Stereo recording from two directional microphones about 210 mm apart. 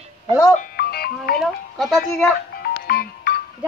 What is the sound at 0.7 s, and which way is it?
Speech, 45° left (ahead or behind).